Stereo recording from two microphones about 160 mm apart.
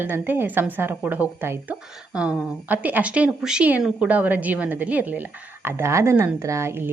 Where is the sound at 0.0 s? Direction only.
15° right (ahead or behind).